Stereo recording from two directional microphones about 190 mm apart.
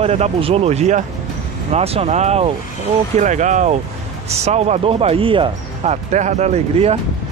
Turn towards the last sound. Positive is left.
turn(degrees=-35)  # may be behind; listen again after turning